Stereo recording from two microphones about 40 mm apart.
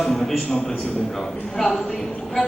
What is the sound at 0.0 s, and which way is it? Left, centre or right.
Speech, centre.